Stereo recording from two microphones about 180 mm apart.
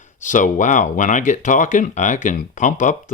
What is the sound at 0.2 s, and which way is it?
Speech, 45° left (ahead or behind).